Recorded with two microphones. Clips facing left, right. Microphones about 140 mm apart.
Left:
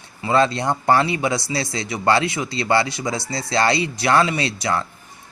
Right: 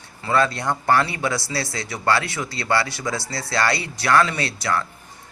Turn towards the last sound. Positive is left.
turn(degrees=20)  # may be behind; listen again after turning